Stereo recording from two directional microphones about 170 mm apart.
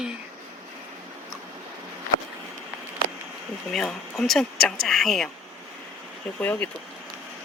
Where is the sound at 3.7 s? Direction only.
Centre (ahead or behind).